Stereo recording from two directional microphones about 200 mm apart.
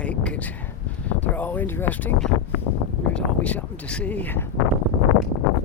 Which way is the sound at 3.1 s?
5° left (ahead or behind).